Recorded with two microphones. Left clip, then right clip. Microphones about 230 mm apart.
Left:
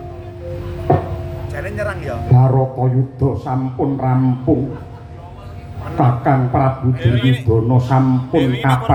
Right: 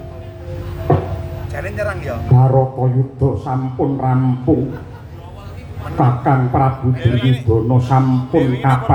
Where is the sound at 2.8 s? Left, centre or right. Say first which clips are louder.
Even; left.